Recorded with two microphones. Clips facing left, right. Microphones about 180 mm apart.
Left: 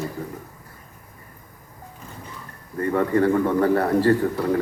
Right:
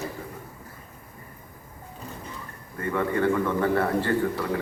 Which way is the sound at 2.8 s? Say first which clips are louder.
Left 5 dB; 40° left (ahead or behind).